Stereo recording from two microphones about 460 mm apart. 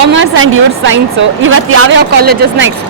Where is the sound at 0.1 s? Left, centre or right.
Right.